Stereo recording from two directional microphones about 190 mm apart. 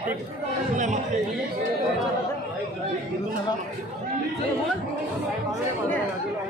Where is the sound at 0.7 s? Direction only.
40° right (ahead or behind).